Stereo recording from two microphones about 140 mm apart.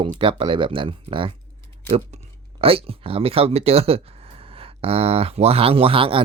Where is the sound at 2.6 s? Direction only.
45° right (ahead or behind).